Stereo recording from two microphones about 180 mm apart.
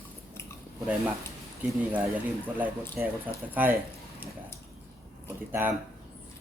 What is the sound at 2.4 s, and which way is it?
Speech, 10° right (ahead or behind).